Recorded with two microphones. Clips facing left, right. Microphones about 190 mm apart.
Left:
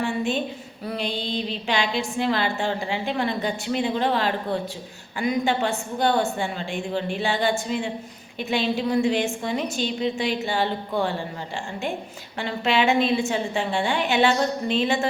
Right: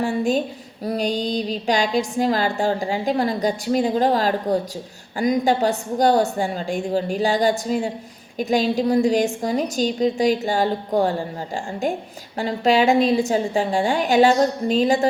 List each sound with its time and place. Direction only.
0.0 s a woman's voice: 40° right (ahead or behind)